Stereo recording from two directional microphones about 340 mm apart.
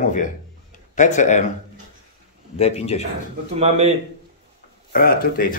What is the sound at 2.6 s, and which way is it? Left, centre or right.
Speech, centre.